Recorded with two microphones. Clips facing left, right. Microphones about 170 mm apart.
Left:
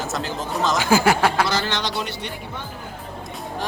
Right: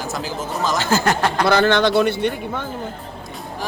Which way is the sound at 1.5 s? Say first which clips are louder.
Right 9 dB; 55° right (ahead or behind).